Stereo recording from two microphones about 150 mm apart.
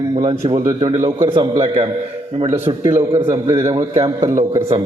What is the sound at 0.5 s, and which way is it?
Speech, 20° right (ahead or behind).